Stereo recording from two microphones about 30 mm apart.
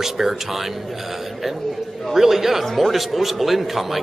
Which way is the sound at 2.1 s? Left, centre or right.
Centre.